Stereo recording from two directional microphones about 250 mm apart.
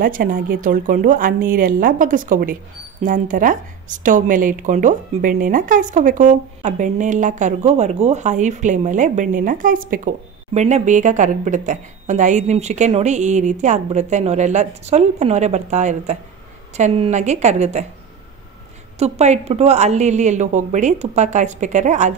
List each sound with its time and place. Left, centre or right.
0.0 s speech: right
18.9 s speech: right